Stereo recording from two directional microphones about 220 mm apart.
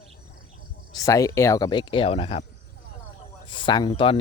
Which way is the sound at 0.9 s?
15° left (ahead or behind).